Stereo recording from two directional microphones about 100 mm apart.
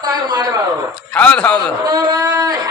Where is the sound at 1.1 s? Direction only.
10° left (ahead or behind).